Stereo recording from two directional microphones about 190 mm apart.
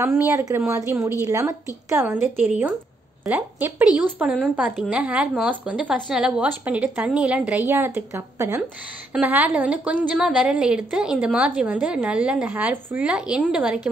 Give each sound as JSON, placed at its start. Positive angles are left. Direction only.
{"t": 0.0, "sound": "a woman's voice", "side_deg": -15}
{"t": 3.3, "sound": "a woman's voice", "side_deg": -5}